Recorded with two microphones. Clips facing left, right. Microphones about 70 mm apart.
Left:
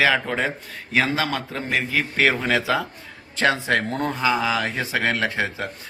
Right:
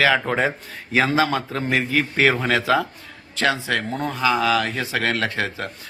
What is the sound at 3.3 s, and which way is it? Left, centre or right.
Speech, left.